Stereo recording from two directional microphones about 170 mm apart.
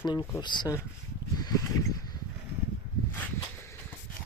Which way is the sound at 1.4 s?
20° left (ahead or behind).